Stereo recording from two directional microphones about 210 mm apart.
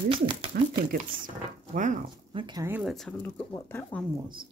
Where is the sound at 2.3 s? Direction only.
25° right (ahead or behind).